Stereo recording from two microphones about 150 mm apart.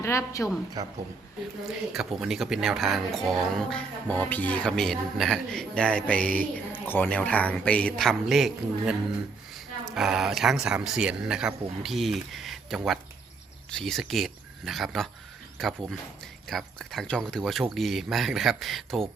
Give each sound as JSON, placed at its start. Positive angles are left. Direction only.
{"t": 0.0, "sound": "a woman's voice", "side_deg": 20}
{"t": 0.8, "sound": "speech", "side_deg": -25}
{"t": 1.9, "sound": "speech", "side_deg": -5}